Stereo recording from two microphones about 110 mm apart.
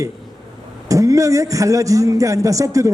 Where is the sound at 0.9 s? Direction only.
30° right (ahead or behind).